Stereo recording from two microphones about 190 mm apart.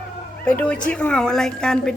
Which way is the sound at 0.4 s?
5° left (ahead or behind).